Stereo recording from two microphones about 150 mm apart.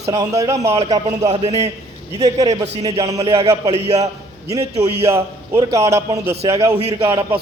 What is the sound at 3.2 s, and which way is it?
Speech, 40° right (ahead or behind).